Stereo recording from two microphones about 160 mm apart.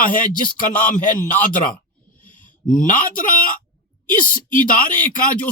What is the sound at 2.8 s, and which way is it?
Speech, 55° left (ahead or behind).